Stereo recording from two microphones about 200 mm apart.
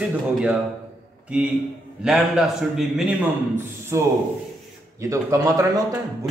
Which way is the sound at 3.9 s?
15° right (ahead or behind).